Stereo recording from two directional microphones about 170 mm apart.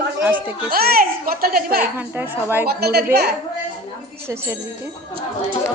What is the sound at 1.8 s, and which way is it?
Speech, 10° right (ahead or behind).